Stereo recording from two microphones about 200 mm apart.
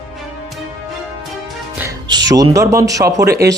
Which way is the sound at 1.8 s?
20° right (ahead or behind).